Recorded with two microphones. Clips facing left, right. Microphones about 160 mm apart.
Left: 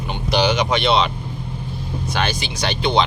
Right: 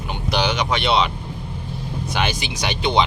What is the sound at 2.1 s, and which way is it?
Speech, 15° right (ahead or behind).